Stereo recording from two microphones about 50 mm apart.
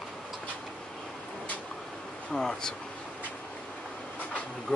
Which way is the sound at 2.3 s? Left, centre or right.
Centre.